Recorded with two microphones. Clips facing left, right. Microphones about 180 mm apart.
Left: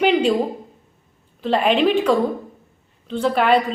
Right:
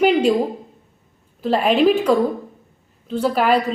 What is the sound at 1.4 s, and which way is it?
A woman's voice, 5° right (ahead or behind).